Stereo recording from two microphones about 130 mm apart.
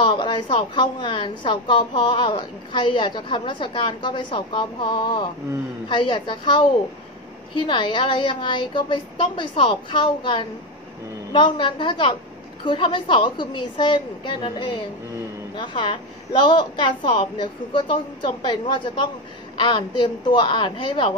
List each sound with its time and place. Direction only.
0.0 s a woman's voice: 35° left (ahead or behind)